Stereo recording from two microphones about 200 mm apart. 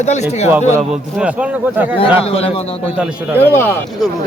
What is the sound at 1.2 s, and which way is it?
Speech, 5° right (ahead or behind).